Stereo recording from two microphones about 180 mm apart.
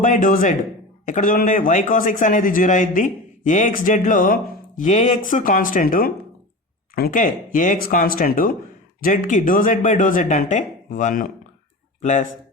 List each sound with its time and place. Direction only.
0.0 s a man's voice: 45° left (ahead or behind)